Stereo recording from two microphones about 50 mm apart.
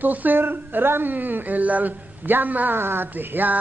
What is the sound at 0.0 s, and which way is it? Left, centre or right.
A woman's voice, right.